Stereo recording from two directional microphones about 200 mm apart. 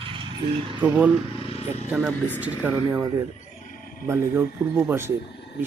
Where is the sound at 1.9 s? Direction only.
Centre (ahead or behind).